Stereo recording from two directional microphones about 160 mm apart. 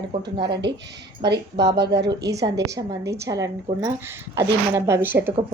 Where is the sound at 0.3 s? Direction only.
90° right.